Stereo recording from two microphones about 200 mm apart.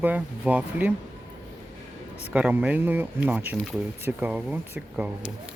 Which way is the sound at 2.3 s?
5° right (ahead or behind).